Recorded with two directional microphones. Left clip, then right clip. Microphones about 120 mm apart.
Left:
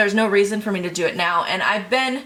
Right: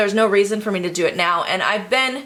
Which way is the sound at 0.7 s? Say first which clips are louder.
Right 2 dB; 65° right (ahead or behind).